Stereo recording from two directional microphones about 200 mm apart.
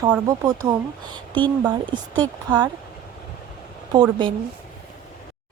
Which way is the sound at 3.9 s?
25° right (ahead or behind).